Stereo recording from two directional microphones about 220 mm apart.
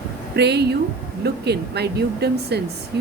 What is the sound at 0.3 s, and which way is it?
Speech, 50° right (ahead or behind).